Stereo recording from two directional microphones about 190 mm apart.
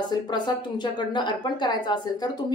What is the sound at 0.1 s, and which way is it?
A woman's voice, 20° left (ahead or behind).